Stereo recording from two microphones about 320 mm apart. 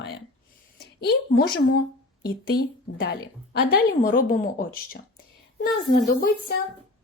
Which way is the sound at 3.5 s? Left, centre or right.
Left.